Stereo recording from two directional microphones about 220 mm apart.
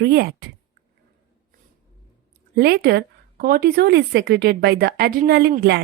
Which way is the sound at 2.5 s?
45° right (ahead or behind).